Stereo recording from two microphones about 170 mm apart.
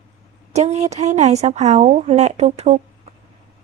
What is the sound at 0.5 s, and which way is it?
Speech, 40° right (ahead or behind).